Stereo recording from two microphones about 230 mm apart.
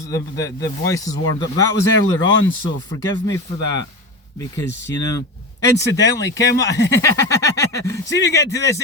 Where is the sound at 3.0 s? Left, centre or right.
Centre.